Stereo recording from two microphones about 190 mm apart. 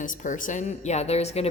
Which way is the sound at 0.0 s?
40° left (ahead or behind).